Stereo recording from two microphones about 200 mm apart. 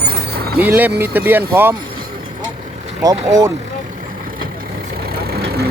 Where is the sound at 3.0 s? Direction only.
20° right (ahead or behind).